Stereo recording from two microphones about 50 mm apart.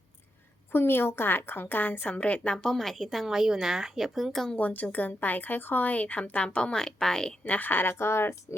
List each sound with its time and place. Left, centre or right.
0.7 s a woman's voice: left
2.6 s a woman's voice: centre
4.5 s a woman's voice: left; by 7.3 s centre
7.4 s a woman's voice: left
7.9 s speech: left